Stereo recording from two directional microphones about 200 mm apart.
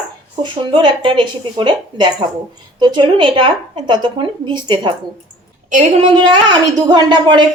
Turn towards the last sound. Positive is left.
turn(degrees=-20)  # may be behind; listen again after turning